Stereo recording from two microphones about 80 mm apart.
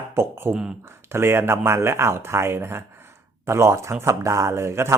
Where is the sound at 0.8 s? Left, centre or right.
Right.